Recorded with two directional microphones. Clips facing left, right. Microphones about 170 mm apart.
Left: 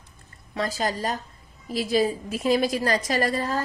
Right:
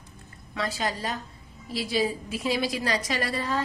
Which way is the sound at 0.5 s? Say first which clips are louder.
Left 3 dB; 40° left (ahead or behind).